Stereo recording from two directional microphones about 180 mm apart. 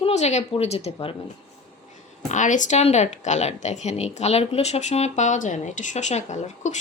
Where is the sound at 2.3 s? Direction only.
45° left (ahead or behind).